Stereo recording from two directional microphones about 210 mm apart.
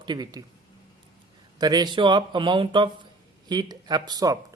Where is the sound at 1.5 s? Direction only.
20° right (ahead or behind).